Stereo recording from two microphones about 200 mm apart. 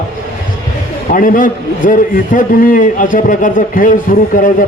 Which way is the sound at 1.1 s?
40° left (ahead or behind).